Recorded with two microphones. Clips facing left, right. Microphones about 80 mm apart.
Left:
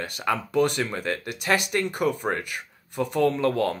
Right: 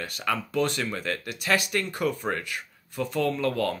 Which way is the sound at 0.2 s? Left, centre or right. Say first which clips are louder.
Left 4 dB; centre.